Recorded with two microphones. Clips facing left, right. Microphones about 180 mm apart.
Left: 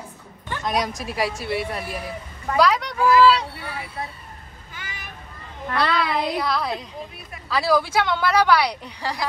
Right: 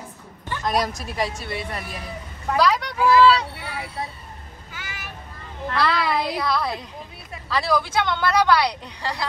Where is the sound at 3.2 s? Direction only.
Centre (ahead or behind).